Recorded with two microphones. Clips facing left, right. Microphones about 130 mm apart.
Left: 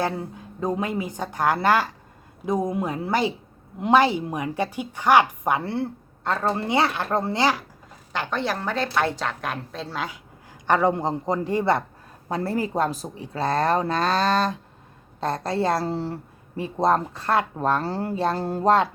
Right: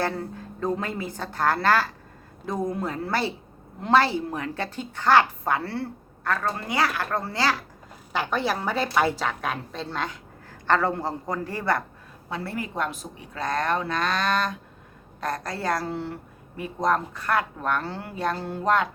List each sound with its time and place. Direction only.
0.0 s a woman's voice: 15° left (ahead or behind)
8.1 s a woman's voice: 5° right (ahead or behind); by 11.8 s 20° left (ahead or behind)
12.3 s a woman's voice: 40° left (ahead or behind)